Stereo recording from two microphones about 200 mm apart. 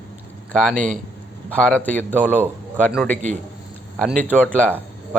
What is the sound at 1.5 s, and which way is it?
Speech, 5° left (ahead or behind).